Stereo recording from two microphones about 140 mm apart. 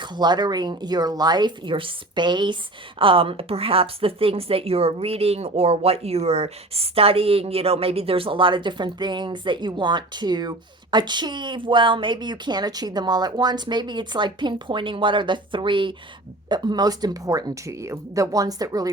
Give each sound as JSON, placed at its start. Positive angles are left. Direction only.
{"t": 0.0, "sound": "a woman's voice", "side_deg": -30}